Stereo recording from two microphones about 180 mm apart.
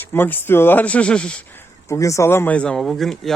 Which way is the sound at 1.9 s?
15° left (ahead or behind).